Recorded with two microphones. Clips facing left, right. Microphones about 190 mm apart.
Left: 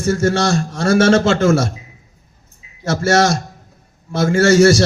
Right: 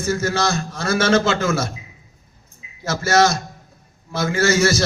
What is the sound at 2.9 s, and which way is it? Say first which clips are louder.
A man's voice: left 2 dB; 35° left (ahead or behind).